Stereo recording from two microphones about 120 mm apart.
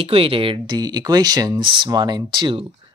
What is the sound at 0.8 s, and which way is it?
Speech, 30° right (ahead or behind).